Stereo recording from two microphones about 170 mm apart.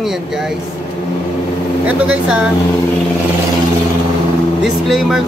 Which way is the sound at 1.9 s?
5° right (ahead or behind).